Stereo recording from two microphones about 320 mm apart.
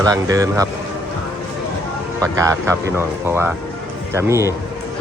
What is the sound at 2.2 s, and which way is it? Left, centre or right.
Speech, centre.